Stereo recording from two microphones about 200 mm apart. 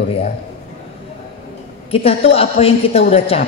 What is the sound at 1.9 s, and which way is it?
A woman's voice, 30° left (ahead or behind).